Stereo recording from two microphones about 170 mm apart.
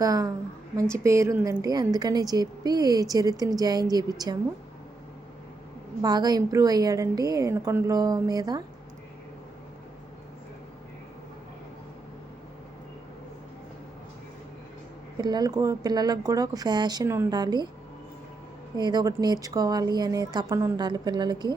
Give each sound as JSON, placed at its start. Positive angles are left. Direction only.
{"t": 0.0, "sound": "a woman's voice", "side_deg": -20}
{"t": 6.0, "sound": "a woman's voice", "side_deg": -25}
{"t": 15.2, "sound": "a woman's voice", "side_deg": -25}
{"t": 18.8, "sound": "a woman's voice", "side_deg": -25}